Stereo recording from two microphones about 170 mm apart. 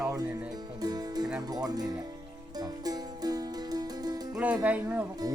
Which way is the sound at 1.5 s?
20° right (ahead or behind).